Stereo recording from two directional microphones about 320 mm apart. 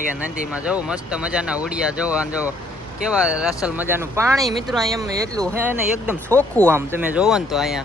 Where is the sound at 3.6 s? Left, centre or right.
Centre.